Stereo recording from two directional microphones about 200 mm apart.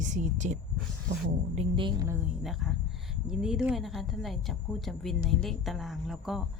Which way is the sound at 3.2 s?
5° right (ahead or behind).